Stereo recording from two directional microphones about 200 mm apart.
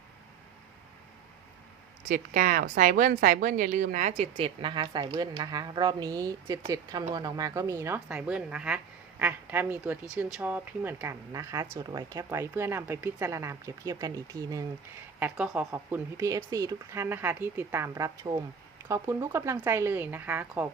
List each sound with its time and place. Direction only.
2.0 s speech: 40° right (ahead or behind); by 20.7 s 10° right (ahead or behind)